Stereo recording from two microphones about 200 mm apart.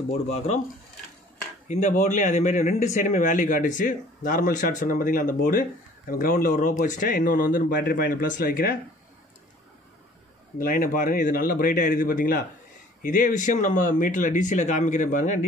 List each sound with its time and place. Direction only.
0.1 s speech: 30° left (ahead or behind)
1.7 s speech: 35° left (ahead or behind)
10.6 s speech: 40° left (ahead or behind)